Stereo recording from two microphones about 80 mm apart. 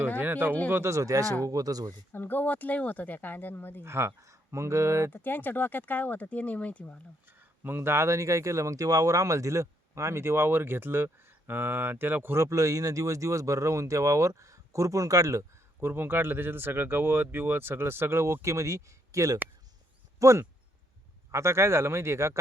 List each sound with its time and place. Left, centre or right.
0.2 s speech: right
0.7 s speech: right
2.1 s speech: left
3.8 s speech: right
5.1 s speech: left
7.3 s speech: right
15.8 s speech: right